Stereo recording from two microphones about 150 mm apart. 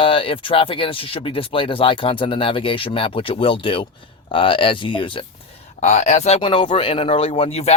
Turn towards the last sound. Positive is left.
turn(degrees=45)  # may be behind; listen again after turning